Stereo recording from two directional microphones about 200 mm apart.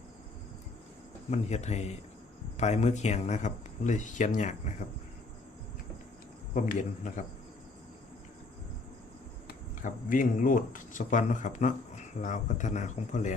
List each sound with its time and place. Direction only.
1.3 s speech: 35° left (ahead or behind)
6.5 s speech: 40° left (ahead or behind)
9.5 s speech: 40° left (ahead or behind)